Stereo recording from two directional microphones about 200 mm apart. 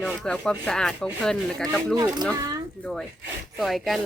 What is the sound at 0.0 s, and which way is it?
Speech, 5° left (ahead or behind).